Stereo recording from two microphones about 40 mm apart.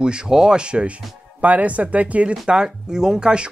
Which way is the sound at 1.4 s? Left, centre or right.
Right.